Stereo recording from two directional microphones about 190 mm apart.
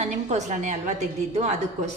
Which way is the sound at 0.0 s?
35° right (ahead or behind).